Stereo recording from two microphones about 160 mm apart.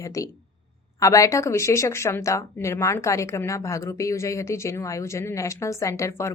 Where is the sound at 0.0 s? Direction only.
20° left (ahead or behind).